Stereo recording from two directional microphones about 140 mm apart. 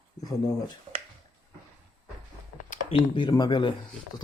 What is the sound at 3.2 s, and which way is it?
Speech, 30° left (ahead or behind).